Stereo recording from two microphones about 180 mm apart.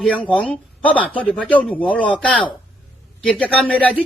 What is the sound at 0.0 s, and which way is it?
A man's voice, 5° left (ahead or behind).